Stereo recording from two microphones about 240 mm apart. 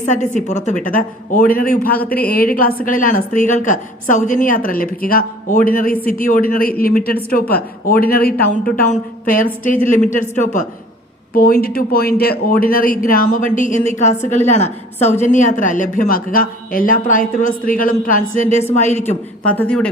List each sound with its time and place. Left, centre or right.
0.0 s a woman's voice: left
19.5 s speech: centre